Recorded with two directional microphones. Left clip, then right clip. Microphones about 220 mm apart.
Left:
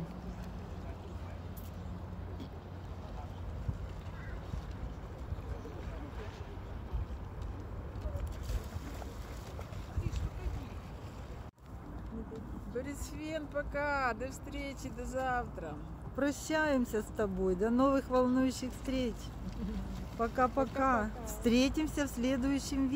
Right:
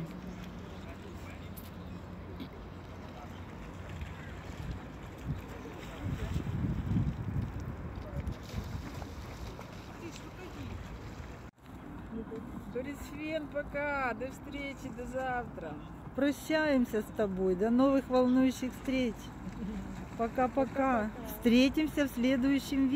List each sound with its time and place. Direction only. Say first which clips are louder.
12.8 s speech: right 2 dB; 25° left (ahead or behind)
16.2 s speech: right 2 dB; centre (ahead or behind)
20.2 s speech: even; centre (ahead or behind)